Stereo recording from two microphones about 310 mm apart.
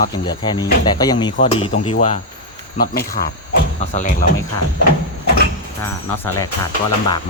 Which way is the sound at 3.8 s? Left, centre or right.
Left.